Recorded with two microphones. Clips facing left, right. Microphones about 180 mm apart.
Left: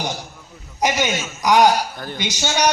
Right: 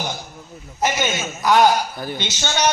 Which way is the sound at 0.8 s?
15° left (ahead or behind).